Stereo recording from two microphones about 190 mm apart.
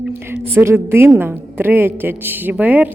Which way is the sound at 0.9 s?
10° right (ahead or behind).